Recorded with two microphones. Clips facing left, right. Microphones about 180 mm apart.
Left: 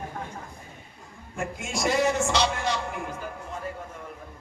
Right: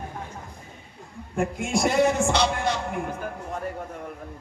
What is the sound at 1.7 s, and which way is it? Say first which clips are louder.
Speech: right 3 dB; 55° right (ahead or behind).